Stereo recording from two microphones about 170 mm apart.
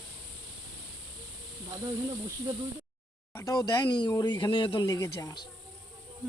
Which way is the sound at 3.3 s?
20° left (ahead or behind).